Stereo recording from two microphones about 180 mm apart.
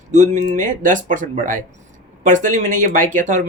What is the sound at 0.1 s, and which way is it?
Speech, 45° right (ahead or behind).